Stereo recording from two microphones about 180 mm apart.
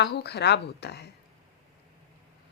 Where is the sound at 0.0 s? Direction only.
65° left (ahead or behind).